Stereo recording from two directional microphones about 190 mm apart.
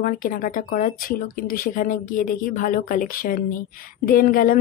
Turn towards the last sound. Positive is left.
turn(degrees=50)  # may be behind; listen again after turning